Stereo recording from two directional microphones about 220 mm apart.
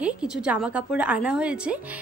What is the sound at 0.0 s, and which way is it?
A woman's voice, 5° right (ahead or behind).